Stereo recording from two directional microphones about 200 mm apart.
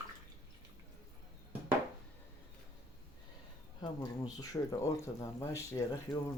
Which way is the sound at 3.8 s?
20° left (ahead or behind).